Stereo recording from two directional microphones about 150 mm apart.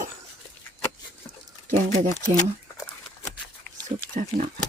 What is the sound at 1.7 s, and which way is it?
Speech, 60° right (ahead or behind).